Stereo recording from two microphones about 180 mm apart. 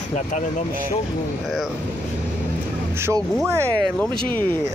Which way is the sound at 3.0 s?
15° right (ahead or behind).